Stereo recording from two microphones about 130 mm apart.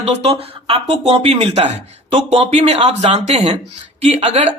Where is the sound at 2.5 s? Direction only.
60° right (ahead or behind).